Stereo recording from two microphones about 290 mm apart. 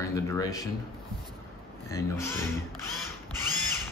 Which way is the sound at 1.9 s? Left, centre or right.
Centre.